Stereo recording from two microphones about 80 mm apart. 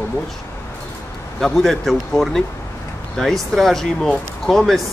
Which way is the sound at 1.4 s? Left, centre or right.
Centre.